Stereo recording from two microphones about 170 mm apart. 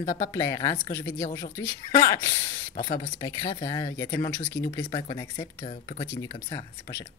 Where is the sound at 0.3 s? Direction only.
20° left (ahead or behind).